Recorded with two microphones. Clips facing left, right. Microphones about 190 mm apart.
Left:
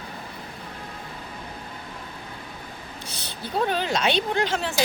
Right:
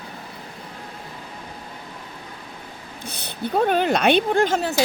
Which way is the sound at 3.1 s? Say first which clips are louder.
Right 8 dB; 55° right (ahead or behind).